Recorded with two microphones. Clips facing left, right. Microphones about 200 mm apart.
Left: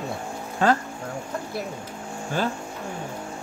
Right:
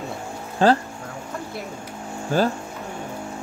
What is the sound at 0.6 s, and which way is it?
Speech, 30° right (ahead or behind).